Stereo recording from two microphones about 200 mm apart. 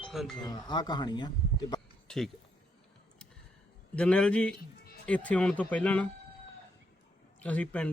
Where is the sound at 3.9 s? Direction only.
5° left (ahead or behind).